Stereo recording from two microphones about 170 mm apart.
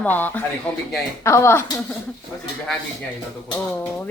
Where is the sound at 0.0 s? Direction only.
10° left (ahead or behind).